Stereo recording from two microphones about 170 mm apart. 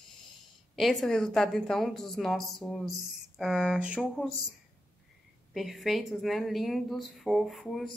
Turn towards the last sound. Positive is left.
turn(degrees=0)  # may be behind; listen again after turning